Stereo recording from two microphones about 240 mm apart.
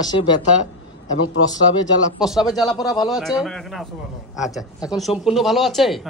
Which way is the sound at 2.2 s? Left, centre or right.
Centre.